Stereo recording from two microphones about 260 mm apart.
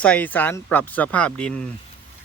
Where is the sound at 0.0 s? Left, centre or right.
Centre.